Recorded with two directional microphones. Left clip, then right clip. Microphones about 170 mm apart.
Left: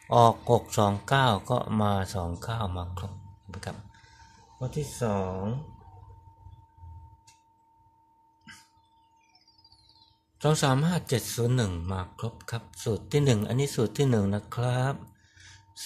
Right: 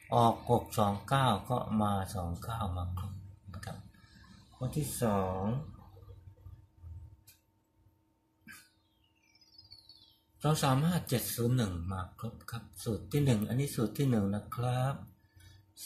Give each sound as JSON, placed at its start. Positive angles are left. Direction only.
{"t": 0.1, "sound": "speech", "side_deg": 55}
{"t": 4.8, "sound": "speech", "side_deg": 40}
{"t": 9.9, "sound": "speech", "side_deg": 50}